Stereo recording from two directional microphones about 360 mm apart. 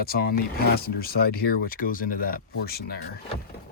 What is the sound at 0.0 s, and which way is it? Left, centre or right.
Speech, left.